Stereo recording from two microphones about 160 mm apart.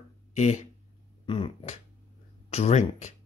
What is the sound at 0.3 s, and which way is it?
Speech, 50° left (ahead or behind).